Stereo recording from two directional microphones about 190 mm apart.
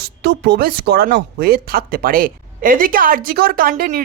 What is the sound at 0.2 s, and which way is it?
Speech, 60° right (ahead or behind).